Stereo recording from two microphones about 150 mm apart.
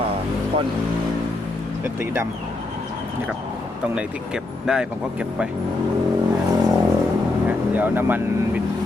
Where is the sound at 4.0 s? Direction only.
5° right (ahead or behind).